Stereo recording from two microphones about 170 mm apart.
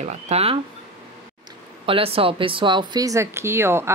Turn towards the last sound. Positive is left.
turn(degrees=-15)  # may be behind; listen again after turning